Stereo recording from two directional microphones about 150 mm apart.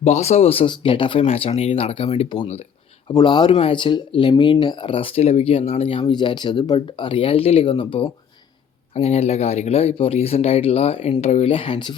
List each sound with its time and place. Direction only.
0.0 s speech: 45° left (ahead or behind)
3.1 s speech: 30° left (ahead or behind)